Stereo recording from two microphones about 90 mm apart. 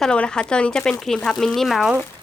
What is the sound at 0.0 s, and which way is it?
Speech, 10° left (ahead or behind).